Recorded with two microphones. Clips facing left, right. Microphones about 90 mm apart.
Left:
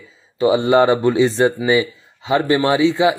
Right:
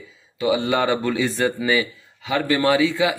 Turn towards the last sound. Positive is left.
turn(degrees=25)  # may be behind; listen again after turning